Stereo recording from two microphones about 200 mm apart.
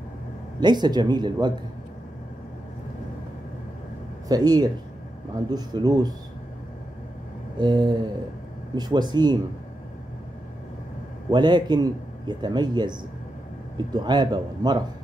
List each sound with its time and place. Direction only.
0.6 s a man's voice: 20° right (ahead or behind)
4.3 s a man's voice: 20° right (ahead or behind)
7.5 s a man's voice: 25° right (ahead or behind)
11.2 s a man's voice: 20° right (ahead or behind)
13.9 s a man's voice: 20° right (ahead or behind)